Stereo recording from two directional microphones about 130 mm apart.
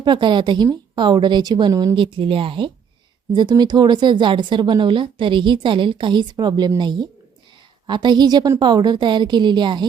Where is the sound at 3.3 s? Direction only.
30° right (ahead or behind).